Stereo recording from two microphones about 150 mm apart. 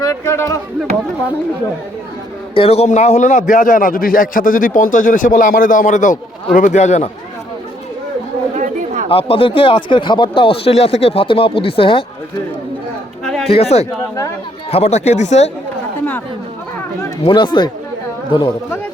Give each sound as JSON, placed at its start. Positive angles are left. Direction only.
{"t": 0.0, "sound": "speech", "side_deg": 20}
{"t": 2.6, "sound": "a man's voice", "side_deg": 45}
{"t": 8.5, "sound": "chatter", "side_deg": -55}
{"t": 9.0, "sound": "speech", "side_deg": 40}
{"t": 13.2, "sound": "chatter", "side_deg": 0}
{"t": 13.5, "sound": "speech", "side_deg": 45}
{"t": 17.2, "sound": "speech", "side_deg": 30}